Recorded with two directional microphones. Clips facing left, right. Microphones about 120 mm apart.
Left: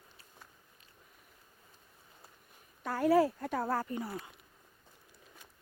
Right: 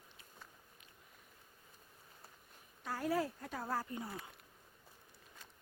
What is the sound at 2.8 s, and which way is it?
Speech, 70° left (ahead or behind).